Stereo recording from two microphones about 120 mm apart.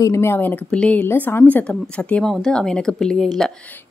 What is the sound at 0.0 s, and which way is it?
A woman's voice, 20° left (ahead or behind).